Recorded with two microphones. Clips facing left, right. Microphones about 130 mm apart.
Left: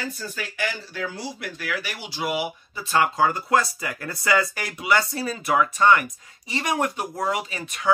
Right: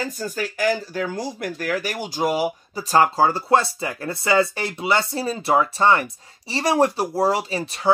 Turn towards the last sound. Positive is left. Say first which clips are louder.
# right 5 dB
turn(degrees=-30)  # may be behind; listen again after turning